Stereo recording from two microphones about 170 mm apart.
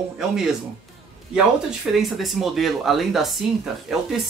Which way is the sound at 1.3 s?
5° right (ahead or behind).